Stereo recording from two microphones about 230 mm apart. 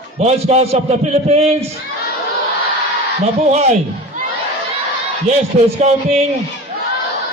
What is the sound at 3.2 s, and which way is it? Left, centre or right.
Speech, right.